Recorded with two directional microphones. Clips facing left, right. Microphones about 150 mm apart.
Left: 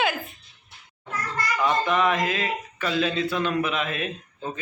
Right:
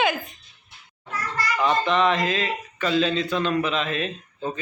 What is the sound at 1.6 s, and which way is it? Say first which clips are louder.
Speech: right 2 dB; 10° left (ahead or behind).